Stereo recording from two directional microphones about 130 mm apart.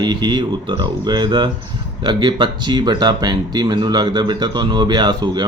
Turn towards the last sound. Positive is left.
turn(degrees=-35)  # may be behind; listen again after turning